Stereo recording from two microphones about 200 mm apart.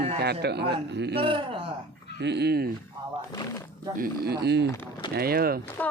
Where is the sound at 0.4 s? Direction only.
55° right (ahead or behind).